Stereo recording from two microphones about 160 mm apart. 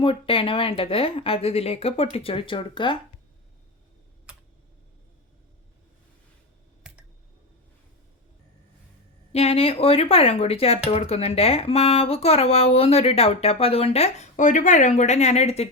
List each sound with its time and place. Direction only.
0.0 s speech: 35° left (ahead or behind)
9.3 s speech: 40° left (ahead or behind)